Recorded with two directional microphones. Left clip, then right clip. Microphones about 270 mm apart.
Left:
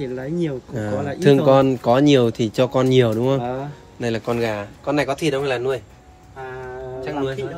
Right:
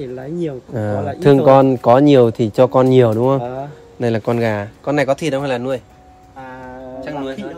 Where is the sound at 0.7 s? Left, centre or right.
Right.